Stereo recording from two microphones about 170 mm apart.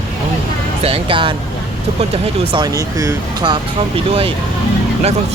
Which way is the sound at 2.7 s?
20° right (ahead or behind).